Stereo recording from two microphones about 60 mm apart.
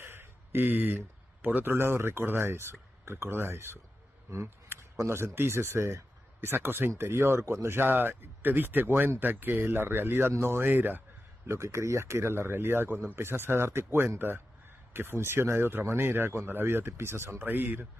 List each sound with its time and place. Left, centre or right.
0.0 s speech: right
11.4 s speech: right